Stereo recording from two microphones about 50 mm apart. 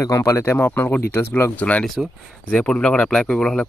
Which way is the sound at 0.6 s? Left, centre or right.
Left.